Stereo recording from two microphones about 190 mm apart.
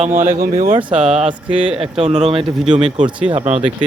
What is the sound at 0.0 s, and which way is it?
Speech, 40° right (ahead or behind).